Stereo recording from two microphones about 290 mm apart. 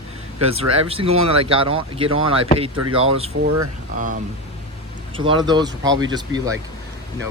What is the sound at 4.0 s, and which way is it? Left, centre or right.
Speech, right.